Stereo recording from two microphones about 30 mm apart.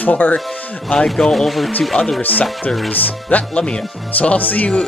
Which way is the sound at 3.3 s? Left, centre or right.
Left.